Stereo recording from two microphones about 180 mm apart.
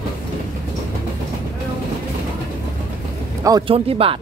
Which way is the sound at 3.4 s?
25° right (ahead or behind).